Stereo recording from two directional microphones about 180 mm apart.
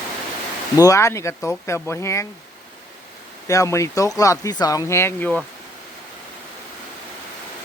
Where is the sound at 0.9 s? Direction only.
15° left (ahead or behind).